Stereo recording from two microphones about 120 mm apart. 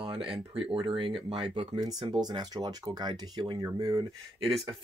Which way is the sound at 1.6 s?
35° right (ahead or behind).